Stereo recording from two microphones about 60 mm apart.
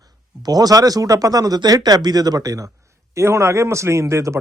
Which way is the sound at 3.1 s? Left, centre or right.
Right.